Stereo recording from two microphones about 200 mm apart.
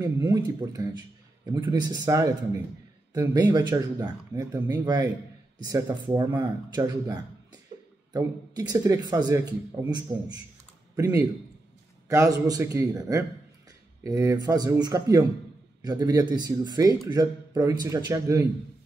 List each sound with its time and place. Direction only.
0.0 s a man's voice: 20° right (ahead or behind)